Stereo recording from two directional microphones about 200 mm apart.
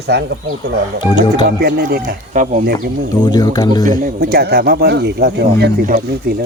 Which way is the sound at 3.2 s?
20° left (ahead or behind).